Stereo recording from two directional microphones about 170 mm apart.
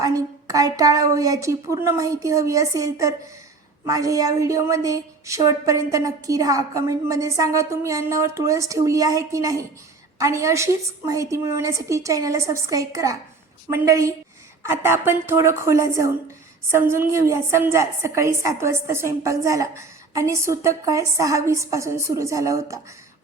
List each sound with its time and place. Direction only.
0.0 s a woman's voice: 20° right (ahead or behind)